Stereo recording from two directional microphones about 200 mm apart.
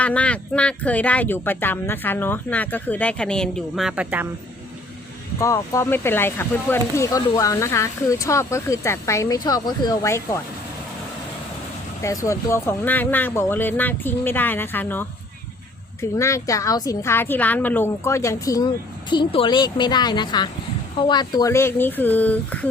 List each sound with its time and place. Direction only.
0.0 s speech: 5° left (ahead or behind)
5.4 s speech: 15° left (ahead or behind)
12.0 s a woman's voice: 15° left (ahead or behind)